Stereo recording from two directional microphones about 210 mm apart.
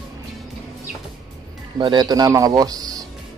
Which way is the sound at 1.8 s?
20° right (ahead or behind).